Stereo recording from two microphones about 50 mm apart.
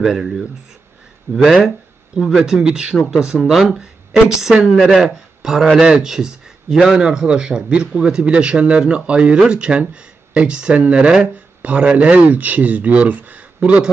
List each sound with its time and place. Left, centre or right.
0.0 s speech: centre
3.3 s a man's voice: centre; by 13.4 s right
13.6 s speech: right